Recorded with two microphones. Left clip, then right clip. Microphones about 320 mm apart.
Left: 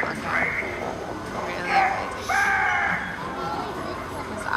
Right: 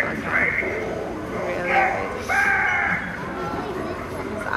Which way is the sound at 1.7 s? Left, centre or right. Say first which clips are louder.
Right 1 dB; left.